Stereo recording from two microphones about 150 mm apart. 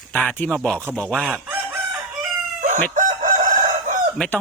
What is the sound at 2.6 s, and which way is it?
Chicken, 55° right (ahead or behind).